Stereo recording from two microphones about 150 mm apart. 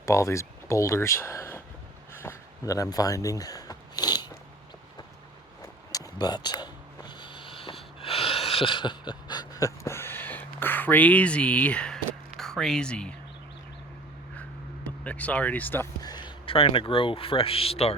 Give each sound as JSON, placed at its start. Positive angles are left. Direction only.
{"t": 0.0, "sound": "speech", "side_deg": 20}
{"t": 2.2, "sound": "a sound", "side_deg": 20}
{"t": 5.9, "sound": "a sound", "side_deg": 25}
{"t": 12.4, "sound": "speech", "side_deg": 5}
{"t": 14.8, "sound": "speech", "side_deg": 10}
{"t": 16.0, "sound": "speech", "side_deg": 30}